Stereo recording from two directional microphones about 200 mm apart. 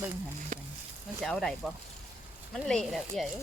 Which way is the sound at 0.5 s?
45° right (ahead or behind).